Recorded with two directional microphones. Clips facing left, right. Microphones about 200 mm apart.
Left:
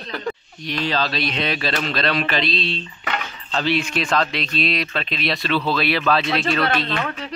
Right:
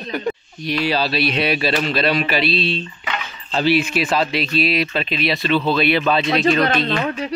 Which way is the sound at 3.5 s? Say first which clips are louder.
Right 4 dB; 10° right (ahead or behind).